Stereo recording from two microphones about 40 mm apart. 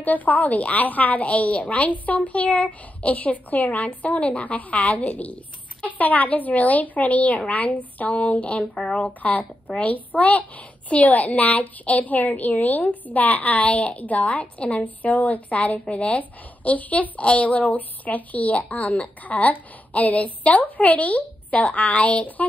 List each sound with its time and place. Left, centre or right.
0.0 s a woman's voice: left